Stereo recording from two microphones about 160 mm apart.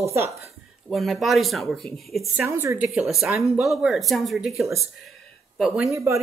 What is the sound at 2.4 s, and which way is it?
A woman's voice, 15° right (ahead or behind).